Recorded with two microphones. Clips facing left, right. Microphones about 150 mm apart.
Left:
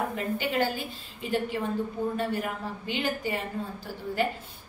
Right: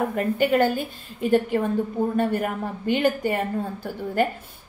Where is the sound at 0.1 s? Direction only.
50° right (ahead or behind).